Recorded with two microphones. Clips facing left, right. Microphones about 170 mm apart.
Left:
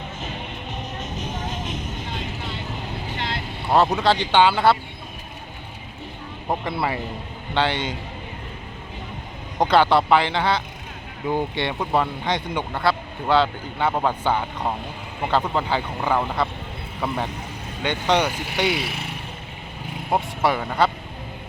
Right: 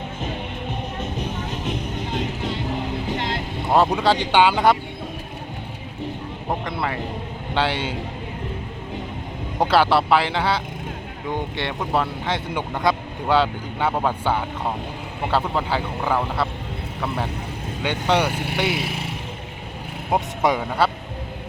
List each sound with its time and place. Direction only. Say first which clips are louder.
1.2 s music: right 2 dB; 60° right (ahead or behind)
3.7 s speech: even; 10° right (ahead or behind)
6.7 s speech: left 1 dB; 5° left (ahead or behind)
7.5 s speech: even; 10° right (ahead or behind)
9.6 s speech: left 1 dB; 5° right (ahead or behind)
17.8 s speech: even; 10° right (ahead or behind)
20.6 s speech: even; 5° right (ahead or behind)